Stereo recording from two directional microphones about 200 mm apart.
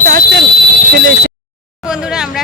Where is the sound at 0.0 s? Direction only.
45° right (ahead or behind).